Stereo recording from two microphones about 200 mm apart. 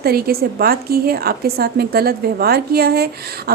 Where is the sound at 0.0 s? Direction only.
50° right (ahead or behind).